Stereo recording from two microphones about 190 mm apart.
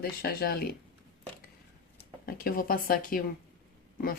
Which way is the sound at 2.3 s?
50° left (ahead or behind).